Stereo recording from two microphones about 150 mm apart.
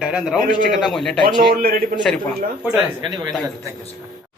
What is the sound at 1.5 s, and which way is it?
Speech, 75° right (ahead or behind).